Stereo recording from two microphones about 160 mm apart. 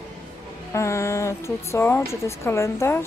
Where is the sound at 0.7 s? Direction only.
20° left (ahead or behind).